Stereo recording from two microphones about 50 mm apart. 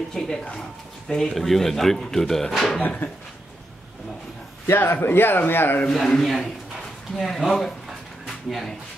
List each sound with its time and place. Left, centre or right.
0.1 s speech: centre
4.6 s speech: left
5.9 s speech: centre
8.3 s a sound: centre